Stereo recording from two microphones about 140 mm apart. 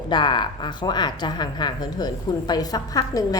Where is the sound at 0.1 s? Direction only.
35° left (ahead or behind).